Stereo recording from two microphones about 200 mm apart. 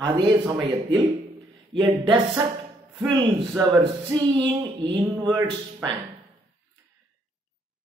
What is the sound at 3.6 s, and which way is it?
Speech, 20° right (ahead or behind).